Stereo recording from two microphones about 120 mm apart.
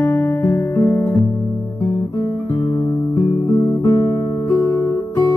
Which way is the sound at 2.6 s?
40° left (ahead or behind).